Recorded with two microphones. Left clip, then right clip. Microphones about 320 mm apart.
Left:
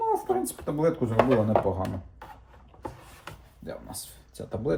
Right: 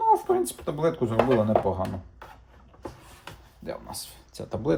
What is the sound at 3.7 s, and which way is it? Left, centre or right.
Speech, centre.